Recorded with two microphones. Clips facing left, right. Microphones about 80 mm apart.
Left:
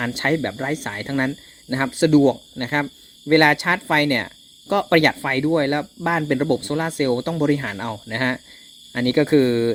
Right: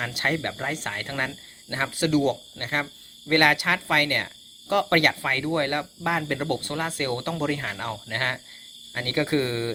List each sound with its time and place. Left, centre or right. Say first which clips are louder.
0.0 s speech: left 6 dB; left